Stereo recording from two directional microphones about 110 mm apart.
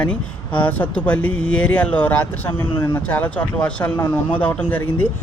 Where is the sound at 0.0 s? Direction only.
10° left (ahead or behind).